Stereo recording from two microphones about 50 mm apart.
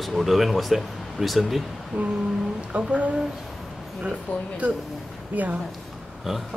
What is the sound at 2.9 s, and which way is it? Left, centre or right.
Speech, right.